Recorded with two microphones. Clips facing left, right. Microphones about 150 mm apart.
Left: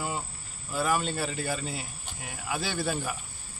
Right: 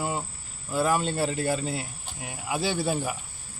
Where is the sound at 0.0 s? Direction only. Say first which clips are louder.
Right 3 dB; 25° right (ahead or behind).